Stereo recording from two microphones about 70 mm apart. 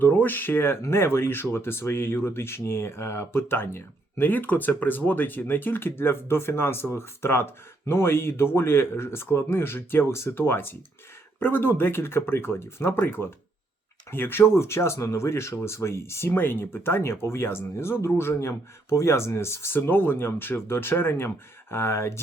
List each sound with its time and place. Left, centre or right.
0.0 s speech: left